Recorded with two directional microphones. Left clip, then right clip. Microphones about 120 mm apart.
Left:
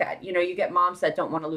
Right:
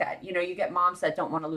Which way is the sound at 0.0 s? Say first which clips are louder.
Left 4 dB; 30° left (ahead or behind).